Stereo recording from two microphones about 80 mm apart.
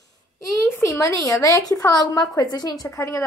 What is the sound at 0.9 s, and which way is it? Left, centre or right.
A woman's voice, left.